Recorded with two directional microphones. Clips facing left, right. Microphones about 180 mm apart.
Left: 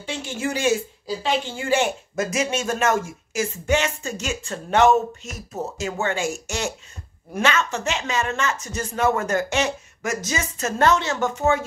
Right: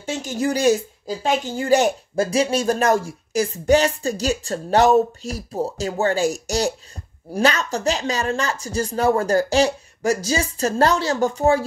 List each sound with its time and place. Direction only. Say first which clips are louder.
0.0 s speech: right 4 dB; 45° right (ahead or behind)